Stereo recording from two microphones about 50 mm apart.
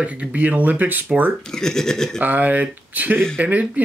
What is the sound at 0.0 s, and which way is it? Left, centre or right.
Speech, right.